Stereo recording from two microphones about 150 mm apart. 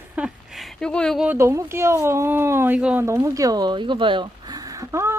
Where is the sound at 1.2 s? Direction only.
15° right (ahead or behind).